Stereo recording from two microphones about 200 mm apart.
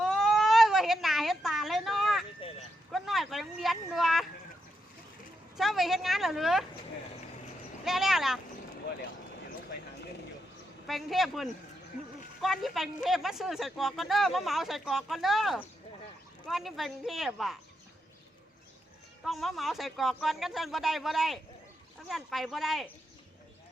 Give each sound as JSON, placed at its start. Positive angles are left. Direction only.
{"t": 0.0, "sound": "baby cry", "side_deg": 0}
{"t": 2.4, "sound": "vehicle", "side_deg": 30}
{"t": 2.9, "sound": "speech", "side_deg": 0}
{"t": 5.5, "sound": "speech", "side_deg": 0}
{"t": 7.9, "sound": "speech", "side_deg": 0}
{"t": 10.8, "sound": "speech", "side_deg": 0}
{"t": 19.2, "sound": "speech", "side_deg": 0}